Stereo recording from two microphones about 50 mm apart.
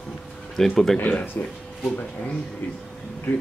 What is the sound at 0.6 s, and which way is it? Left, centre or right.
Speech, centre.